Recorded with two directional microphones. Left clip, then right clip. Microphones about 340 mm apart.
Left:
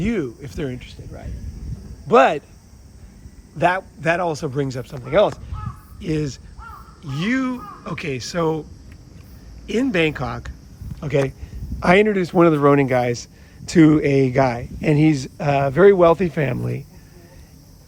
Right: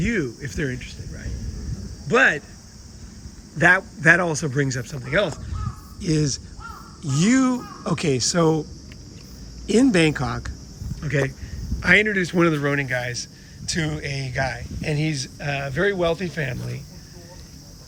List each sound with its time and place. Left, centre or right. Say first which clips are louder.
0.0 s speech: left 1 dB; centre
3.6 s speech: right 2 dB; centre
6.0 s speech: right 1 dB; centre
9.6 s speech: right 1 dB; centre
11.8 s speech: left 2 dB; centre